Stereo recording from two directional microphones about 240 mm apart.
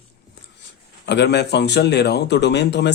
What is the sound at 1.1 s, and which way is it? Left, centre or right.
Speech, left.